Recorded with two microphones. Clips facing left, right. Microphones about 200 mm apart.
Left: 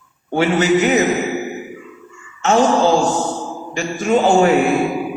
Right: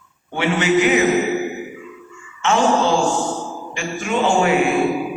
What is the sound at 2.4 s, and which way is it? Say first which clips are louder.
A man's voice: left 3 dB; 40° left (ahead or behind).